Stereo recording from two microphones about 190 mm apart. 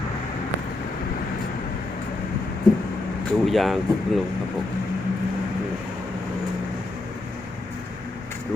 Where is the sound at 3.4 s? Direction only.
Centre (ahead or behind).